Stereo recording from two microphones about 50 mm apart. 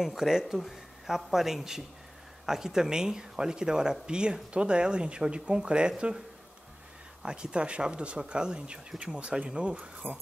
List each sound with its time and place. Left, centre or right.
0.0 s speech: centre
7.2 s speech: centre